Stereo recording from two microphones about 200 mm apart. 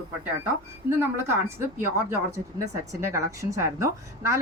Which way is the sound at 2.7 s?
15° right (ahead or behind).